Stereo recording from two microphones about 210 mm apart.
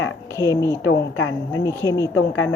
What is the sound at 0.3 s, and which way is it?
Speech, 15° left (ahead or behind).